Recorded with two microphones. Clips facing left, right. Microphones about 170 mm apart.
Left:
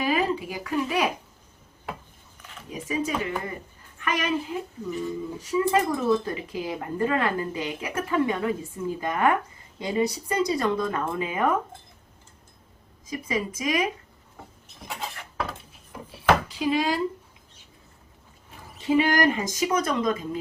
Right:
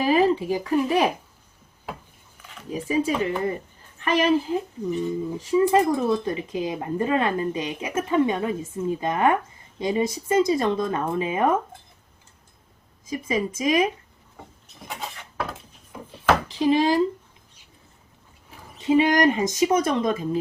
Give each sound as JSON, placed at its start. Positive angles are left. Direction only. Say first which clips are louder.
{"t": 0.0, "sound": "speech", "louder": "right 5 dB", "side_deg": -35}
{"t": 2.4, "sound": "a sound", "louder": "right 1 dB", "side_deg": 0}
{"t": 4.0, "sound": "a woman's voice", "louder": "right 6 dB", "side_deg": -30}
{"t": 4.9, "sound": "speech", "louder": "right 5 dB", "side_deg": -20}
{"t": 13.1, "sound": "speech", "louder": "right 3 dB", "side_deg": -25}
{"t": 14.3, "sound": "wood", "louder": "right 1 dB", "side_deg": 0}
{"t": 16.6, "sound": "a woman's voice", "louder": "right 5 dB", "side_deg": -35}
{"t": 18.8, "sound": "speech", "louder": "right 3 dB", "side_deg": -20}